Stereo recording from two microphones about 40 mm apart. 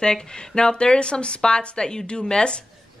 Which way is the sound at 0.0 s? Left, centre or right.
Left.